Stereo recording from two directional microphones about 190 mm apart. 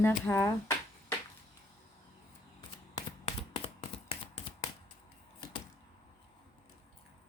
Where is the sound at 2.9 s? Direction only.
25° left (ahead or behind).